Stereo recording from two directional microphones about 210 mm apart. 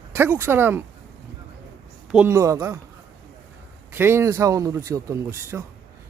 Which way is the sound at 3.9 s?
10° right (ahead or behind).